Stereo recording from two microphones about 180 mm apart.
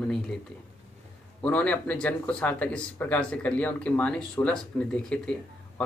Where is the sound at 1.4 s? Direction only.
5° left (ahead or behind).